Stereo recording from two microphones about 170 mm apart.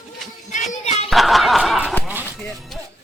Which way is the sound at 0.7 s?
40° left (ahead or behind).